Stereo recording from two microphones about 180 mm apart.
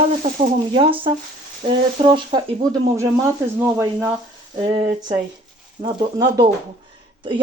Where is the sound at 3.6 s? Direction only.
15° right (ahead or behind).